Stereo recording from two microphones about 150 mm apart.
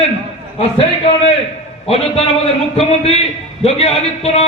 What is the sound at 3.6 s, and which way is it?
Speech, 45° left (ahead or behind).